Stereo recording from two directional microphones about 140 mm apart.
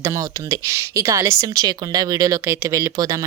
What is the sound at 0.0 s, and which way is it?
A woman's voice, 20° right (ahead or behind).